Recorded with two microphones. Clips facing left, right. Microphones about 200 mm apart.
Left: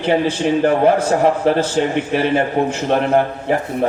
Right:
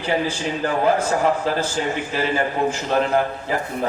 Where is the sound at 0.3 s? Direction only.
65° left (ahead or behind).